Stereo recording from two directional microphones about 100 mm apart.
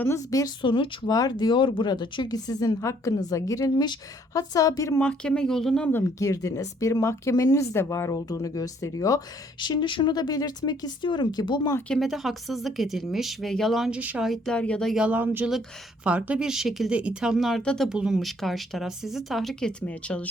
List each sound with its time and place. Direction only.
0.3 s speech: 35° left (ahead or behind)
0.6 s speech: 50° left (ahead or behind); by 4.9 s 35° left (ahead or behind)
4.9 s speech: 10° left (ahead or behind)
6.1 s speech: 35° left (ahead or behind)
9.6 s speech: 50° left (ahead or behind)
11.9 s speech: centre (ahead or behind)
13.9 s speech: 15° right (ahead or behind)
14.3 s speech: 5° left (ahead or behind)
14.9 s speech: 15° right (ahead or behind); by 17.8 s 10° left (ahead or behind)
17.8 s speech: 5° right (ahead or behind); by 20.2 s 10° left (ahead or behind)